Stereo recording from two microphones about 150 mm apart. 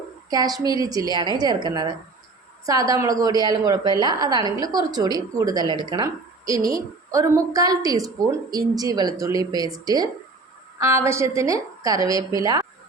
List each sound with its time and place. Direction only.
0.3 s a woman's voice: 25° right (ahead or behind)